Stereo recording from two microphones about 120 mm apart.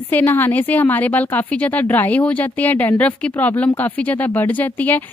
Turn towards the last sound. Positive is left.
turn(degrees=15)  # may be behind; listen again after turning